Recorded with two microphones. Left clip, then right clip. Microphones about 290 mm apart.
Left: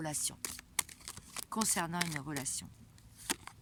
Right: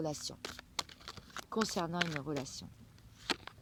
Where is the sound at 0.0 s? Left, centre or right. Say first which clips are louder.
Right 1 dB; left.